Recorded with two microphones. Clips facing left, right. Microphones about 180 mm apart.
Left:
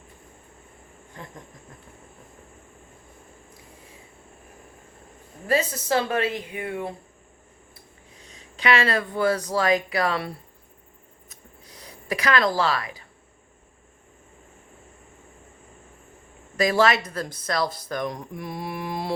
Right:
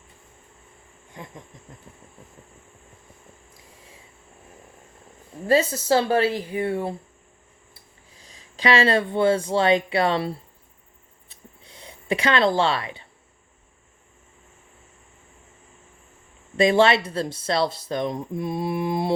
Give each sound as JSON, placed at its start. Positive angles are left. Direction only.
{"t": 5.5, "sound": "a woman's voice", "side_deg": -30}
{"t": 8.1, "sound": "speech", "side_deg": -30}
{"t": 11.3, "sound": "a sound", "side_deg": -25}
{"t": 16.6, "sound": "speech", "side_deg": -25}